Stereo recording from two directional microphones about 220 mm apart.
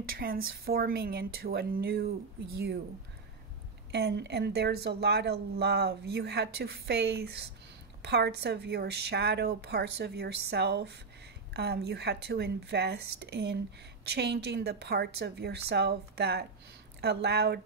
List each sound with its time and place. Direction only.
0.2 s speech: 40° right (ahead or behind)
3.9 s speech: 50° right (ahead or behind)